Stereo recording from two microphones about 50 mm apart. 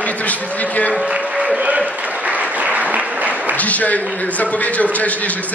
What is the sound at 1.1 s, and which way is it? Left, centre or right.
Speech, centre.